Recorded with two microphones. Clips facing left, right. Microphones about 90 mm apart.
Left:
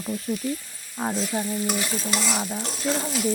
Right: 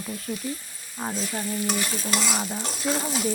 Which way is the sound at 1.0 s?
15° left (ahead or behind).